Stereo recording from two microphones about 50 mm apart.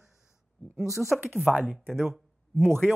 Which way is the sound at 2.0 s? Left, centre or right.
Centre.